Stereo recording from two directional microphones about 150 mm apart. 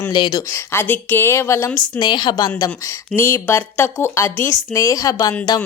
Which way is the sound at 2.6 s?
20° left (ahead or behind).